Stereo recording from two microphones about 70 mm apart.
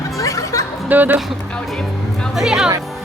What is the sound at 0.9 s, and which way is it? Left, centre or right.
Speech, right.